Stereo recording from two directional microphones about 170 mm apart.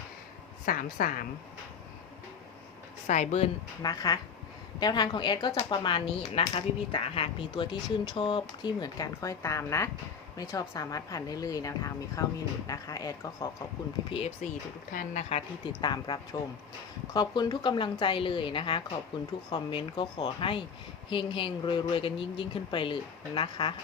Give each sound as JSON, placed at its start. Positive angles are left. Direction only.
{"t": 0.6, "sound": "a woman's voice", "side_deg": 55}
{"t": 3.1, "sound": "speech", "side_deg": 45}
{"t": 3.8, "sound": "speech", "side_deg": 20}
{"t": 14.4, "sound": "speech", "side_deg": 45}